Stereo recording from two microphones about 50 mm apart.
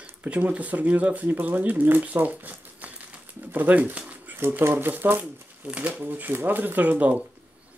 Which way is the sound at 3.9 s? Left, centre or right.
Right.